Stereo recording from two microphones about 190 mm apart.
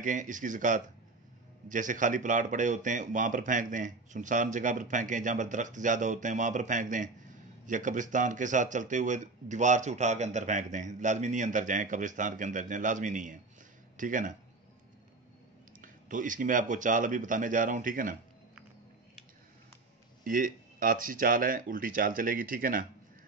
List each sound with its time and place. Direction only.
0.0 s speech: 40° right (ahead or behind)
15.8 s speech: 45° right (ahead or behind)
20.2 s speech: 45° right (ahead or behind)